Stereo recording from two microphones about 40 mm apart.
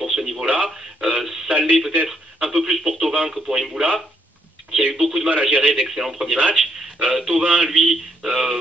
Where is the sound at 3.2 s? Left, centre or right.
Centre.